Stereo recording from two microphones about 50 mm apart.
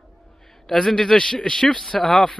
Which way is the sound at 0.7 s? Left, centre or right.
Centre.